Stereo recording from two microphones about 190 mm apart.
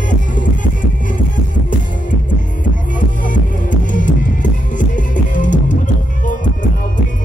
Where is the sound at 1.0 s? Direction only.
45° left (ahead or behind).